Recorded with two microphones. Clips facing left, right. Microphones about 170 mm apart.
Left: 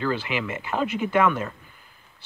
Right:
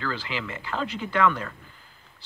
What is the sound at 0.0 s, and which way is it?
Speech, 20° left (ahead or behind).